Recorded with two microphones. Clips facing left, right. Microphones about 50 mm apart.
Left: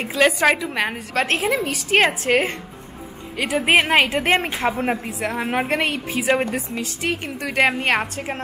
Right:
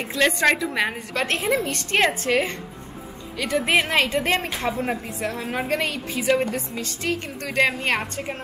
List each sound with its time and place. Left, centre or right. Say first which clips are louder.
0.1 s a woman's voice: left 3 dB; centre
3.7 s a woman's voice: left 5 dB; left
6.1 s a woman's voice: even; centre